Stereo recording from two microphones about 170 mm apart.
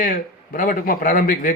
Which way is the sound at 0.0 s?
55° left (ahead or behind).